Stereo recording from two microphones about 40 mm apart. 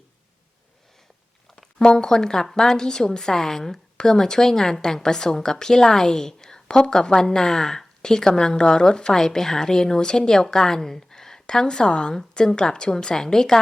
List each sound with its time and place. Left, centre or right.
1.8 s a woman's voice: left